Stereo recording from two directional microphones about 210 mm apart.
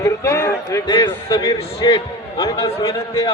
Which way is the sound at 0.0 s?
15° left (ahead or behind).